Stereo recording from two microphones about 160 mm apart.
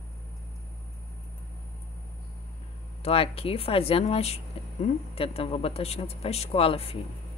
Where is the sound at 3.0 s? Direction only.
35° left (ahead or behind).